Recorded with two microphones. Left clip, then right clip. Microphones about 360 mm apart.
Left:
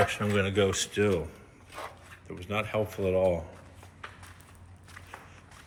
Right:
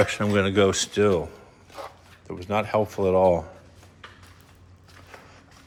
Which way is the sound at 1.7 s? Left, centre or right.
Centre.